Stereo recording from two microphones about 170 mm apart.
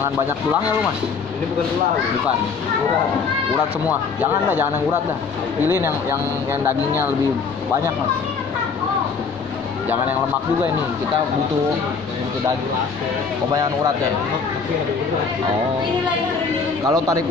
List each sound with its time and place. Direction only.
4.2 s speech: 10° right (ahead or behind)
16.8 s a man's voice: 20° right (ahead or behind)